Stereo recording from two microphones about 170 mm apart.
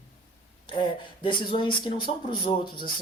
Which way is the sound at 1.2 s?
30° left (ahead or behind).